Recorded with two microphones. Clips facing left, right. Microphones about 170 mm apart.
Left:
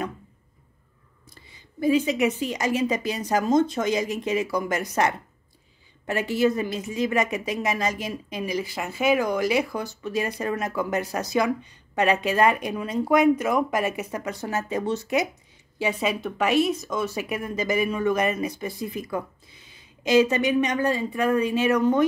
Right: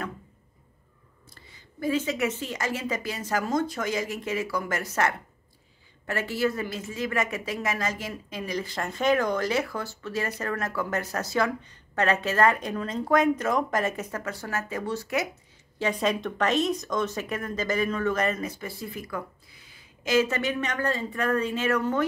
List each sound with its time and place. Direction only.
1.3 s speech: 15° left (ahead or behind)
15.8 s speech: 5° left (ahead or behind)